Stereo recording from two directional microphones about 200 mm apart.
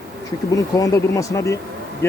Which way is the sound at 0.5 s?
15° left (ahead or behind).